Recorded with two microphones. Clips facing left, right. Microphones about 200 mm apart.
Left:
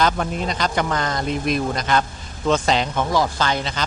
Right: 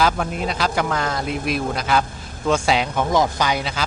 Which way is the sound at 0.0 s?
5° right (ahead or behind).